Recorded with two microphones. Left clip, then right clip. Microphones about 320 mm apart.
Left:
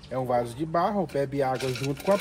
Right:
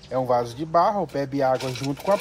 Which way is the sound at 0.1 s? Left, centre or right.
Centre.